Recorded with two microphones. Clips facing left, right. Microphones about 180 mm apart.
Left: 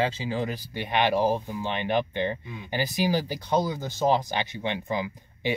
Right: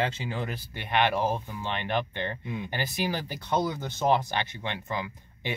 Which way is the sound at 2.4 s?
20° right (ahead or behind).